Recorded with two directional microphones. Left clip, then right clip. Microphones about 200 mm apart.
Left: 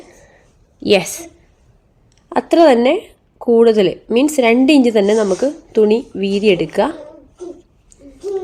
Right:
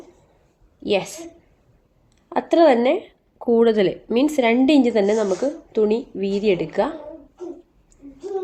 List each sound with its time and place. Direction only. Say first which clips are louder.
0.8 s a woman's voice: left 8 dB; 35° left (ahead or behind)
2.3 s a woman's voice: left 5 dB; 30° left (ahead or behind)